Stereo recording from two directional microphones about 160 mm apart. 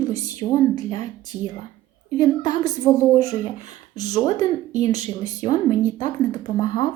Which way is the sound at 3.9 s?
25° left (ahead or behind).